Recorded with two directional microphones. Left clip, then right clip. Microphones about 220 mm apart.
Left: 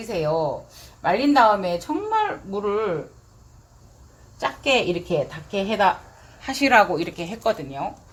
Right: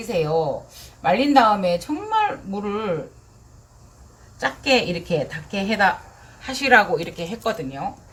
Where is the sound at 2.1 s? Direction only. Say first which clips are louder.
Right 3 dB; 20° left (ahead or behind).